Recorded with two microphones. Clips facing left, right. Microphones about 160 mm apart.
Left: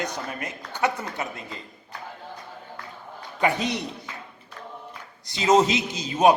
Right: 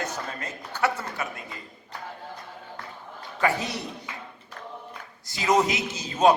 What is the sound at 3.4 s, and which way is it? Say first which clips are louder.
Speech: left 2 dB; 20° left (ahead or behind).